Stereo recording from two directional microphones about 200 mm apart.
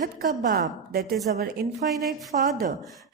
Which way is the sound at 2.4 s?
45° right (ahead or behind).